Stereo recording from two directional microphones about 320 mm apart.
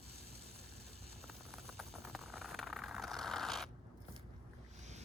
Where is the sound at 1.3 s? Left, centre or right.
Centre.